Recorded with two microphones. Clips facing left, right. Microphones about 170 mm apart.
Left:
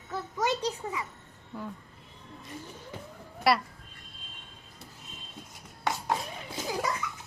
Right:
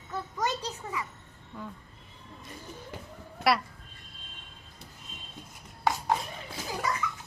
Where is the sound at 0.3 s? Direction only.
15° left (ahead or behind).